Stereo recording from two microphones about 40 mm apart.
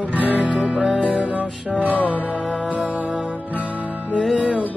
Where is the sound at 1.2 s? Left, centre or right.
Right.